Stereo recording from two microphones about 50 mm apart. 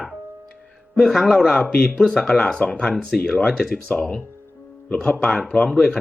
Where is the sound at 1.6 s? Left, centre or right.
Left.